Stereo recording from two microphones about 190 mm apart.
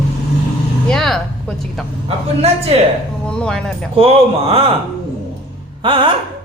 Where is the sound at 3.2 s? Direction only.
5° left (ahead or behind).